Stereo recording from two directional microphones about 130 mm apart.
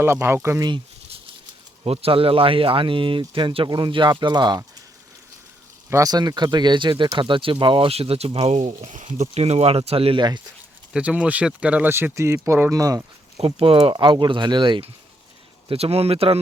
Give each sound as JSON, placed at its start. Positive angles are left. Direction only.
{"t": 0.0, "sound": "speech", "side_deg": -20}
{"t": 1.8, "sound": "speech", "side_deg": -50}
{"t": 5.9, "sound": "speech", "side_deg": -30}
{"t": 10.9, "sound": "speech", "side_deg": -10}
{"t": 13.4, "sound": "speech", "side_deg": -45}
{"t": 15.7, "sound": "speech", "side_deg": -50}